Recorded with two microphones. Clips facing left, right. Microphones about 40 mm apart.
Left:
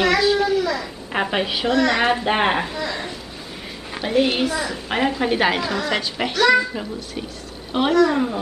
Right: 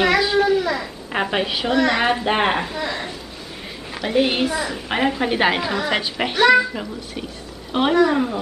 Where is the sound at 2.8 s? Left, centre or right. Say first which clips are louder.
Right 1 dB; centre.